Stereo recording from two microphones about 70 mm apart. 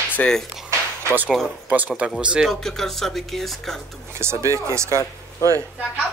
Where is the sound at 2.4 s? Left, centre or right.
Centre.